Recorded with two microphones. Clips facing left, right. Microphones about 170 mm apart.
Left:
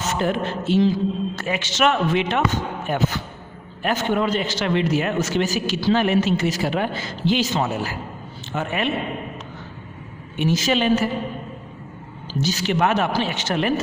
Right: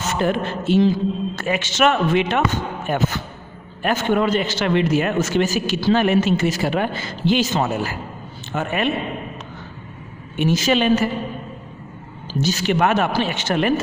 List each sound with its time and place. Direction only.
0.2 s a man's voice: 55° right (ahead or behind)
10.3 s speech: 55° right (ahead or behind)
12.4 s speech: 55° right (ahead or behind)